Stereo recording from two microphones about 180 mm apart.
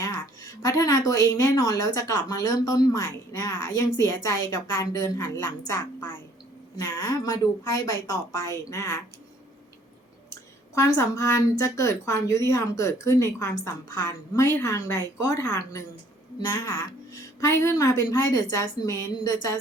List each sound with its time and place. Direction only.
0.0 s a woman's voice: 20° left (ahead or behind)
10.8 s a woman's voice: 15° left (ahead or behind)